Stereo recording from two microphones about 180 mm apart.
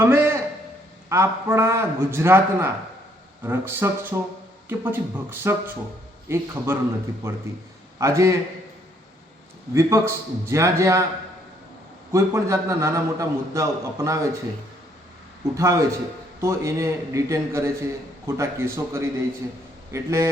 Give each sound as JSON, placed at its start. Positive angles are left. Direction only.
{"t": 0.0, "sound": "a man's voice", "side_deg": -15}
{"t": 9.7, "sound": "a man's voice", "side_deg": -15}
{"t": 12.1, "sound": "a man's voice", "side_deg": -15}
{"t": 15.5, "sound": "a man's voice", "side_deg": -15}